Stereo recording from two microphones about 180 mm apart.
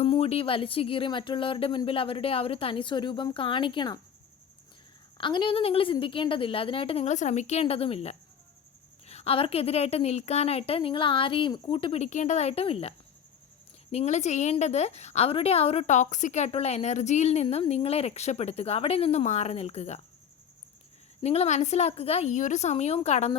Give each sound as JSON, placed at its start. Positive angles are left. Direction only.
{"t": 0.0, "sound": "speech", "side_deg": 35}
{"t": 5.1, "sound": "a woman's voice", "side_deg": 25}
{"t": 13.9, "sound": "a woman's voice", "side_deg": 40}
{"t": 21.2, "sound": "a woman's voice", "side_deg": 35}